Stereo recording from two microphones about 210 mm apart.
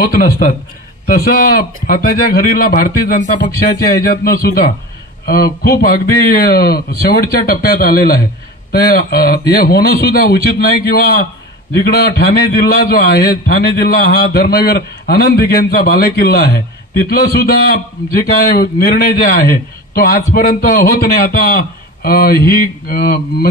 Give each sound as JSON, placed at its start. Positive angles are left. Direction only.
{"t": 1.0, "sound": "a man's voice", "side_deg": 45}